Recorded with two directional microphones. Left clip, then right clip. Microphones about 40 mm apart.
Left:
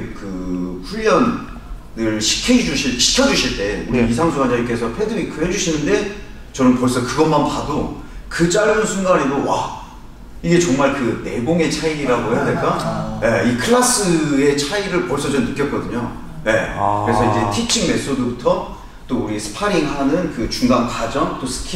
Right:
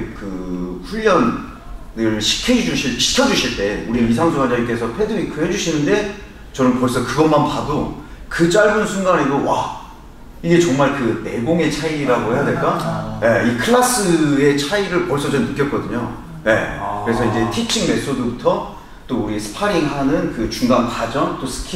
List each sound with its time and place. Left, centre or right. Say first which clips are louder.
0.9 s a man's voice: even; left
16.8 s a man's voice: left 6 dB; centre
17.2 s a man's voice: left 2 dB; left